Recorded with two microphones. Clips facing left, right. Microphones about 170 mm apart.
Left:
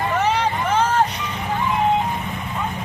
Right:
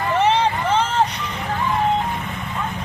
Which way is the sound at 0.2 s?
30° right (ahead or behind).